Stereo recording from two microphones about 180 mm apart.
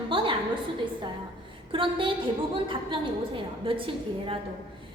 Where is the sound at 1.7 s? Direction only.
25° right (ahead or behind).